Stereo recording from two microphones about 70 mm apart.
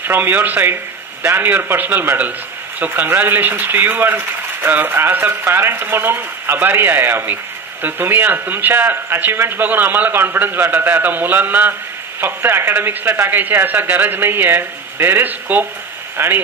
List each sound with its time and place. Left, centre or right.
0.0 s speech: right